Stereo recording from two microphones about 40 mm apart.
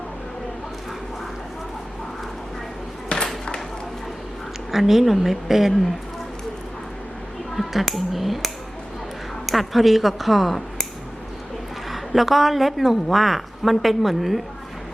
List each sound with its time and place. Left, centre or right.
3.1 s a sound: left
4.7 s a woman's voice: centre
7.5 s a woman's voice: centre
9.5 s a woman's voice: centre
11.9 s a woman's voice: centre